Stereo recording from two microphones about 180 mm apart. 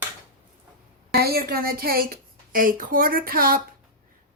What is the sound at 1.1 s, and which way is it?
A woman's voice, 60° right (ahead or behind).